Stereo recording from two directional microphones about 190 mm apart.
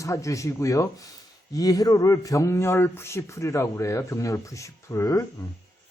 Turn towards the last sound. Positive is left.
turn(degrees=15)  # may be behind; listen again after turning